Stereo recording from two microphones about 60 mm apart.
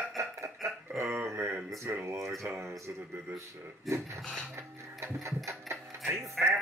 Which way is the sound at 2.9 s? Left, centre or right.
Right.